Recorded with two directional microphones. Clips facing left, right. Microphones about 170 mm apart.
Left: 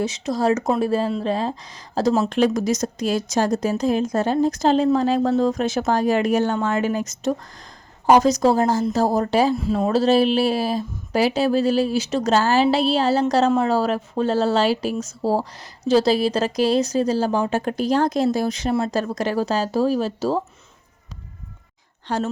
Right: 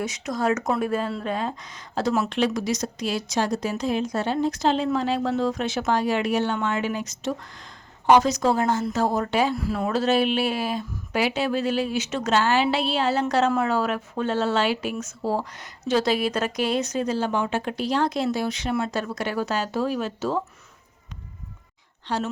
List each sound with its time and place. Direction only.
0.0 s a woman's voice: 30° left (ahead or behind)
2.3 s a woman's voice: 45° left (ahead or behind)
9.6 s a woman's voice: 20° left (ahead or behind)
22.0 s speech: 45° left (ahead or behind)